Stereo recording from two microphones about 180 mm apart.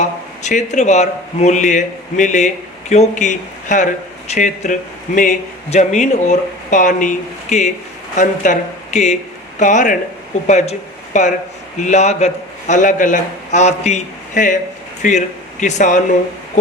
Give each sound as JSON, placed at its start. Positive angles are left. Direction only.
{"t": 0.0, "sound": "a man's voice", "side_deg": 40}